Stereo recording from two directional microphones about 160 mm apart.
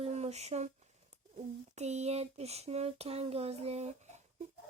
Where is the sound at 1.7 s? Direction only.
45° right (ahead or behind).